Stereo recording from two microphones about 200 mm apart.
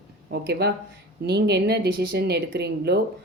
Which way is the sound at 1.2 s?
55° right (ahead or behind).